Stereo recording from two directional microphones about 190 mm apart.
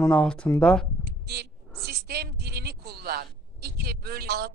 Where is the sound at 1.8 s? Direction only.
55° right (ahead or behind).